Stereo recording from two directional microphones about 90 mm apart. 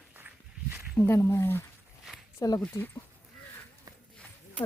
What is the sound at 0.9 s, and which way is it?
Speech, 30° left (ahead or behind).